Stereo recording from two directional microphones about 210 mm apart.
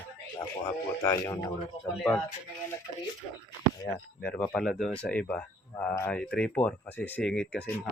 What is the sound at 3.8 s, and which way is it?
Speech, 5° left (ahead or behind).